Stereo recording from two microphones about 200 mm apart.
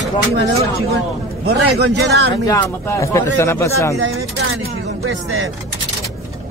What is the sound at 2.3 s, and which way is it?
Speech, 15° left (ahead or behind).